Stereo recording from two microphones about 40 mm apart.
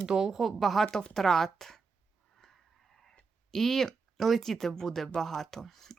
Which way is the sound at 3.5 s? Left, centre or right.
Centre.